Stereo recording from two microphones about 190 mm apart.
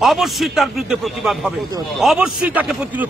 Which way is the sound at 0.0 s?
Centre (ahead or behind).